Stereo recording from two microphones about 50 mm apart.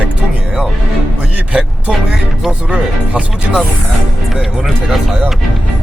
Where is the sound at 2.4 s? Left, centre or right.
Centre.